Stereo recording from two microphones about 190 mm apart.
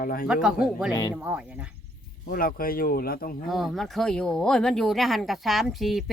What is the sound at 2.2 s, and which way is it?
Speech, 50° left (ahead or behind).